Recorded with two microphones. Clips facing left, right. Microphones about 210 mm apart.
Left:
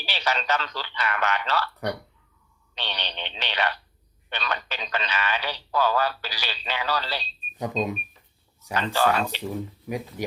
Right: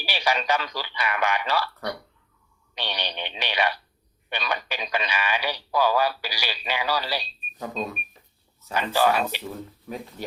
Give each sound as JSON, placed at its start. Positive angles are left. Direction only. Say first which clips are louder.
{"t": 0.0, "sound": "speech", "louder": "right 2 dB", "side_deg": -10}
{"t": 2.7, "sound": "speech", "louder": "right 2 dB", "side_deg": -10}
{"t": 7.6, "sound": "speech", "louder": "left 4 dB", "side_deg": 20}
{"t": 8.7, "sound": "speech", "louder": "right 1 dB", "side_deg": -10}
{"t": 9.9, "sound": "speech", "louder": "left 4 dB", "side_deg": 15}